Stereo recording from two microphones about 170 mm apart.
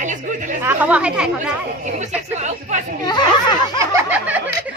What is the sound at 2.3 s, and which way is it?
Speech, 45° right (ahead or behind).